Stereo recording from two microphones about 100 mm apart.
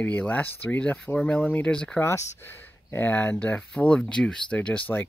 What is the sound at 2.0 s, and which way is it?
Speech, 25° left (ahead or behind).